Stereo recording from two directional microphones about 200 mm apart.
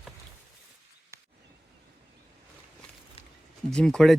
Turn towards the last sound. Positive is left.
turn(degrees=0)  # may be behind; listen again after turning